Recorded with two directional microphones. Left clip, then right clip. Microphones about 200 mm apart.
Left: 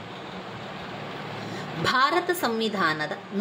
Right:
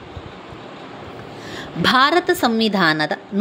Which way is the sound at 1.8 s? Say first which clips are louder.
Right 7 dB; 40° right (ahead or behind).